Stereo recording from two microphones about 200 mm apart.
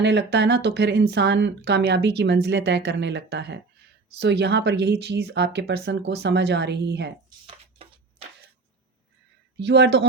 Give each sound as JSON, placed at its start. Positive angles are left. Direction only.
{"t": 0.0, "sound": "speech", "side_deg": -60}
{"t": 7.4, "sound": "a sound", "side_deg": -25}
{"t": 9.6, "sound": "speech", "side_deg": -60}